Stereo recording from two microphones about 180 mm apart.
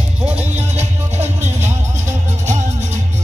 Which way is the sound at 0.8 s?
40° right (ahead or behind).